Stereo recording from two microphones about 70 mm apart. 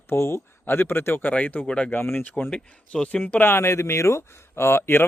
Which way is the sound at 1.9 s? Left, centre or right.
Left.